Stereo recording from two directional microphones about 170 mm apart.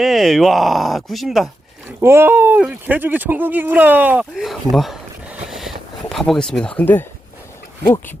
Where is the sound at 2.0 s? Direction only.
15° right (ahead or behind).